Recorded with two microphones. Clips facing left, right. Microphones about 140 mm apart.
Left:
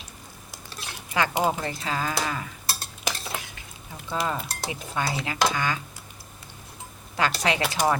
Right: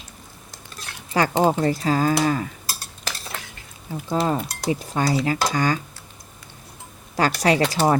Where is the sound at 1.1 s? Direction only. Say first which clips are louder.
Right 5 dB; 40° right (ahead or behind).